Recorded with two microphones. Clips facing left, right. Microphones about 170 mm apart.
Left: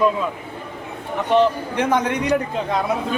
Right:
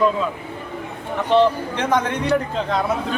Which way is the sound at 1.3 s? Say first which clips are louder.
Right 1 dB; 10° left (ahead or behind).